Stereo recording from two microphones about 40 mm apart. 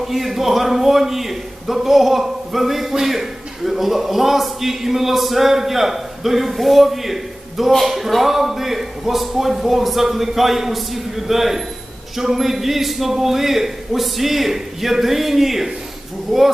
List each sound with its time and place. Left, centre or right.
0.0 s a man's voice: centre